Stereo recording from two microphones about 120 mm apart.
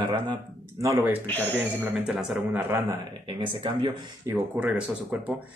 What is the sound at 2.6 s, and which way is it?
Speech, 20° right (ahead or behind).